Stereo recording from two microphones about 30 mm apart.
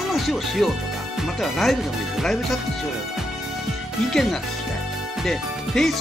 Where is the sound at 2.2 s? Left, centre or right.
Centre.